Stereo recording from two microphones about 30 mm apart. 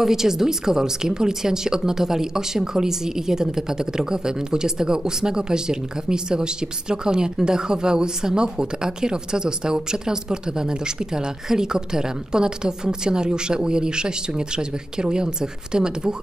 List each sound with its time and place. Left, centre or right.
0.0 s speech: centre